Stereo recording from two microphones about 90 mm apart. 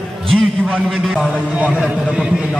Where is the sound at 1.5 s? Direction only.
10° right (ahead or behind).